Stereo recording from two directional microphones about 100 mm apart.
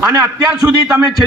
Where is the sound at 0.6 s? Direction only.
40° right (ahead or behind).